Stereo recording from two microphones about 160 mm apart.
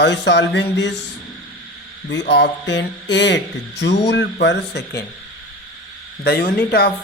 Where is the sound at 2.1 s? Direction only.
90° left.